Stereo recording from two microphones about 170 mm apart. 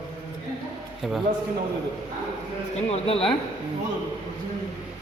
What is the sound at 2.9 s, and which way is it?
Speech, 35° left (ahead or behind).